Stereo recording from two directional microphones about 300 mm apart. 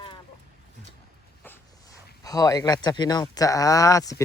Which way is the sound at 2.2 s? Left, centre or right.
Centre.